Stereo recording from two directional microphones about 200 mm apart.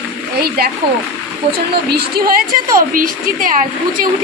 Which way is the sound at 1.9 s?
50° right (ahead or behind).